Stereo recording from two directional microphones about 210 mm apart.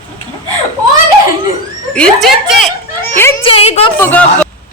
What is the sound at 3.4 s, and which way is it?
Speech, 30° left (ahead or behind).